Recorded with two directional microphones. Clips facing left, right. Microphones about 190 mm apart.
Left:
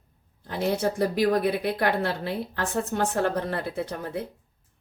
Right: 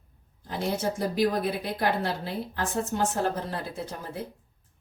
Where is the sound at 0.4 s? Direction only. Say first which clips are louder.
Left 3 dB; 60° left (ahead or behind).